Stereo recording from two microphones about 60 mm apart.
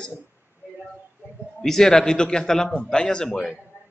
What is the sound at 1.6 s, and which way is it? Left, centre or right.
A man's voice, centre.